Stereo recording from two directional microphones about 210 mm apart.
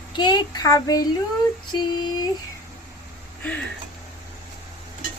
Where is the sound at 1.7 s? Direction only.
20° left (ahead or behind).